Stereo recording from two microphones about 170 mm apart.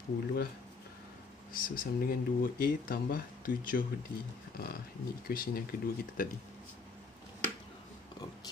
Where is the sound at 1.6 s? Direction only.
55° left (ahead or behind).